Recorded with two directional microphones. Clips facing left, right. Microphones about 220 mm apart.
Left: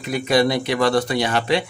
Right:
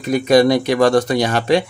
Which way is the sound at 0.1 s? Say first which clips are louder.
Right 6 dB; 45° right (ahead or behind).